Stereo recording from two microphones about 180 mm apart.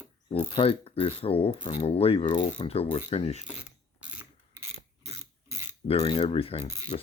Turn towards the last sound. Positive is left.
turn(degrees=-15)  # may be behind; listen again after turning